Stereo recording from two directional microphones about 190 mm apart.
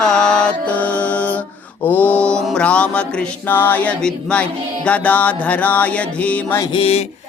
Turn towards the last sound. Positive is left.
turn(degrees=30)  # may be behind; listen again after turning